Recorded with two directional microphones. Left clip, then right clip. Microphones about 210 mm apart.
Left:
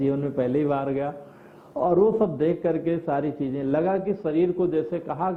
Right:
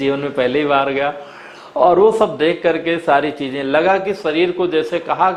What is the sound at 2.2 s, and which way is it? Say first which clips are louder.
Speech: right 8 dB; 10° right (ahead or behind).